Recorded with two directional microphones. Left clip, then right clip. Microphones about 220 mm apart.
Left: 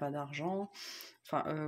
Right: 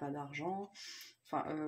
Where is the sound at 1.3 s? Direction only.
40° left (ahead or behind).